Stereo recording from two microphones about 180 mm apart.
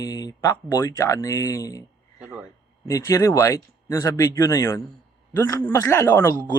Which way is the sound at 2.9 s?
15° left (ahead or behind).